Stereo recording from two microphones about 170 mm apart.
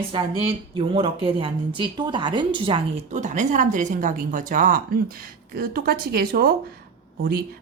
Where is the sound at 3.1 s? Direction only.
45° right (ahead or behind).